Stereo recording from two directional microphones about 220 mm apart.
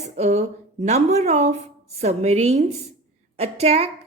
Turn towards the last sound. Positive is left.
turn(degrees=-30)  # may be behind; listen again after turning